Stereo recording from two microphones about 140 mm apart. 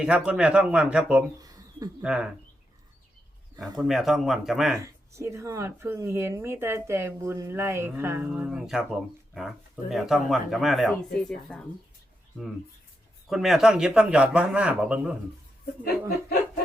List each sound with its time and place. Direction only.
0.0 s speech: 5° right (ahead or behind)
3.6 s speech: centre (ahead or behind)
4.8 s speech: 20° right (ahead or behind)
8.3 s speech: 5° right (ahead or behind)
13.3 s speech: centre (ahead or behind)